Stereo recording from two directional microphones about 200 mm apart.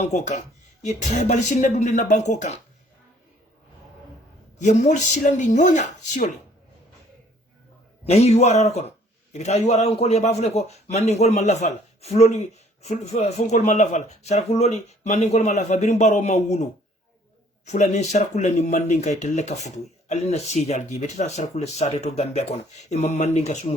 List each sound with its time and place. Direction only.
0.0 s speech: 35° left (ahead or behind)
4.5 s speech: 35° left (ahead or behind)
8.0 s speech: 30° left (ahead or behind)
17.7 s speech: 35° left (ahead or behind)